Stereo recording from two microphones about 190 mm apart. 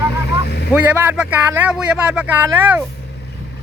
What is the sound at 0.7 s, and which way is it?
Speech, 10° right (ahead or behind).